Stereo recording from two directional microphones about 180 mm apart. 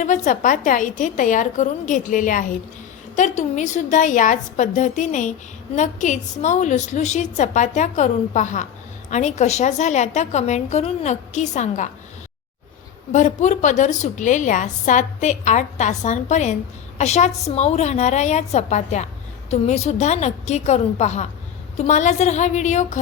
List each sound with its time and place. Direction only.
0.0 s a woman's voice: 45° left (ahead or behind)
13.1 s a woman's voice: 45° left (ahead or behind)